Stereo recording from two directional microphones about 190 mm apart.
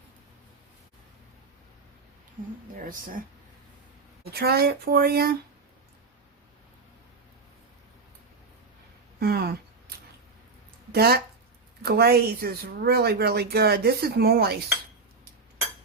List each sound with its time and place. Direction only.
4.2 s speech: 55° right (ahead or behind)
9.2 s a sound: 55° right (ahead or behind)
10.9 s speech: 55° right (ahead or behind)